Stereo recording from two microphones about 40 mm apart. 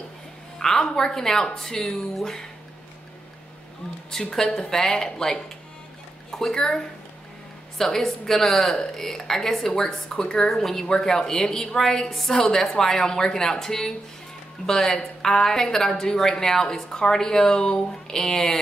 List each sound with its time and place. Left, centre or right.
0.6 s a woman's voice: centre
4.1 s a woman's voice: centre